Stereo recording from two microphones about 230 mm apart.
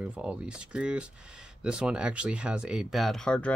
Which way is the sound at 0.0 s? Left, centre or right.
Centre.